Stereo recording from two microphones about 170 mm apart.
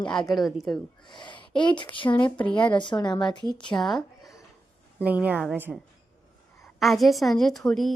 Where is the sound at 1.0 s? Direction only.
25° left (ahead or behind).